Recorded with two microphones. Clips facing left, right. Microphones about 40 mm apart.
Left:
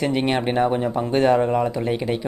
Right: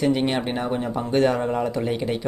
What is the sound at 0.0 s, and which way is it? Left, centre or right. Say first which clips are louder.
Speech: left 1 dB; centre.